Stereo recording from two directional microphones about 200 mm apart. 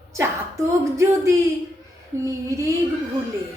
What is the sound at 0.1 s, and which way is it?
A woman's voice, 15° right (ahead or behind).